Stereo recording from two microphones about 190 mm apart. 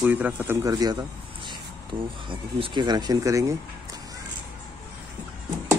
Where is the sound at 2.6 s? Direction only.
25° right (ahead or behind).